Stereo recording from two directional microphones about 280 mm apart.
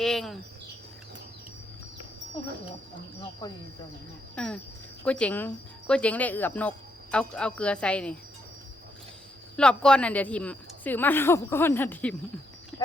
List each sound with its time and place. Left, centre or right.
0.0 s a sound: centre
3.4 s a woman's voice: centre
4.4 s speech: centre
9.6 s a woman's voice: centre